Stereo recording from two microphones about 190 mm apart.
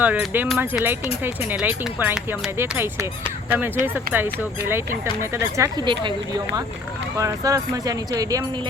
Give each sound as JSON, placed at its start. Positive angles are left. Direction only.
{"t": 0.0, "sound": "speech", "side_deg": -10}
{"t": 7.2, "sound": "speech", "side_deg": -15}